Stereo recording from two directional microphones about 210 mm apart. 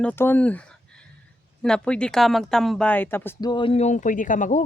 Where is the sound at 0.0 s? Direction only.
10° left (ahead or behind).